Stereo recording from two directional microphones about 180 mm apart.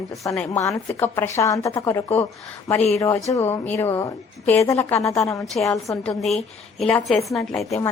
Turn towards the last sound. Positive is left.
turn(degrees=0)  # may be behind; listen again after turning